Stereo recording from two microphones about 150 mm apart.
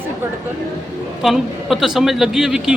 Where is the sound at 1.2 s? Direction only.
5° right (ahead or behind).